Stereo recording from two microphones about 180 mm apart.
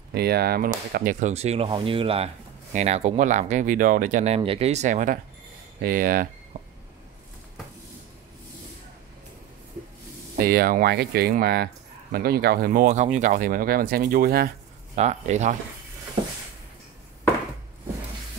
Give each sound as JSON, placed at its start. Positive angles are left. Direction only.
{"t": 0.1, "sound": "speech", "side_deg": -60}
{"t": 0.7, "sound": "speech", "side_deg": -45}
{"t": 1.3, "sound": "speech", "side_deg": -35}
{"t": 6.5, "sound": "a sound", "side_deg": -35}
{"t": 10.3, "sound": "speech", "side_deg": -55}
{"t": 15.0, "sound": "speech", "side_deg": -40}